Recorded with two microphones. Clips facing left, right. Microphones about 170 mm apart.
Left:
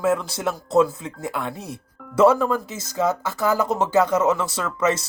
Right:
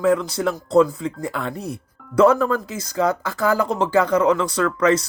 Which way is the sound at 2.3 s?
10° left (ahead or behind).